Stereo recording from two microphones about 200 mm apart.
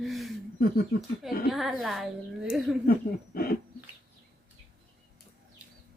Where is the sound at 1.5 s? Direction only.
Centre (ahead or behind).